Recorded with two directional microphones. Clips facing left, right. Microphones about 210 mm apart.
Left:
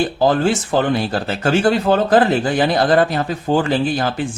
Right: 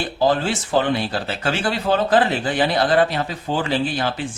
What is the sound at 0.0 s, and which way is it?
Speech, 45° left (ahead or behind).